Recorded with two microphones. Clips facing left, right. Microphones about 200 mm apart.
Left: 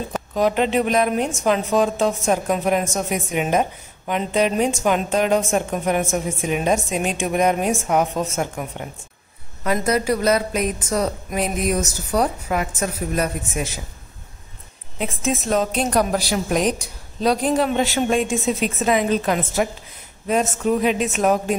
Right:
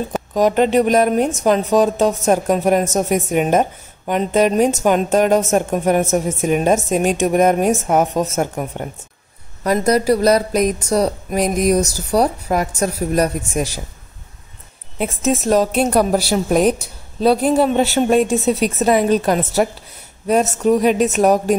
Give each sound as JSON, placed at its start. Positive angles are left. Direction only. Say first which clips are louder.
{"t": 0.3, "sound": "a woman's voice", "louder": "right 4 dB", "side_deg": -45}
{"t": 15.0, "sound": "speech", "louder": "right 5 dB", "side_deg": -40}
{"t": 16.5, "sound": "a woman's voice", "louder": "right 6 dB", "side_deg": -5}
{"t": 17.7, "sound": "speech", "louder": "right 5 dB", "side_deg": -40}